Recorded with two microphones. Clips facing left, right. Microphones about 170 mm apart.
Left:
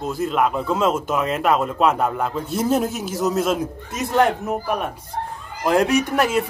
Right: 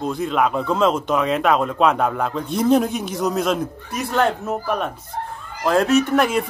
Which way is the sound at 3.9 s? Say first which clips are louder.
Left 2 dB; 20° left (ahead or behind).